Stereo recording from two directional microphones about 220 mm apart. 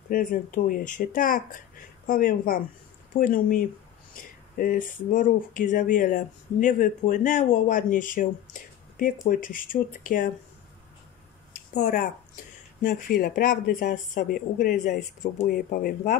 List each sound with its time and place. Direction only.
0.1 s speech: 40° left (ahead or behind)
11.8 s speech: 40° left (ahead or behind)